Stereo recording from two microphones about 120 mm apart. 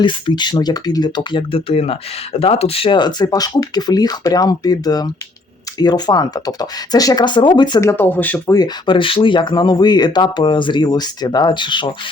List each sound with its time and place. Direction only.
0.0 s speech: 45° left (ahead or behind)
7.8 s speech: 20° left (ahead or behind)
8.4 s speech: 35° left (ahead or behind)